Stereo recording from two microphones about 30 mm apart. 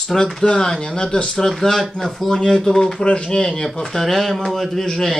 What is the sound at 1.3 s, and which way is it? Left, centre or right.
Speech, centre.